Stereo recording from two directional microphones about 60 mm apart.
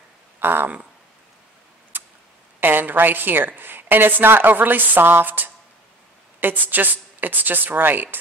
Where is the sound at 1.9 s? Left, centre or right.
Right.